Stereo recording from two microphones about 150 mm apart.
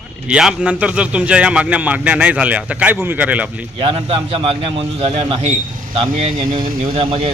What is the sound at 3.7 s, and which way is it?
A man's voice, 35° right (ahead or behind).